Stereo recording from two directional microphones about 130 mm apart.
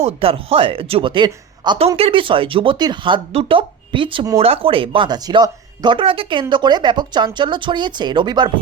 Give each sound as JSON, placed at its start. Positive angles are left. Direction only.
{"t": 0.0, "sound": "a woman's voice", "side_deg": -45}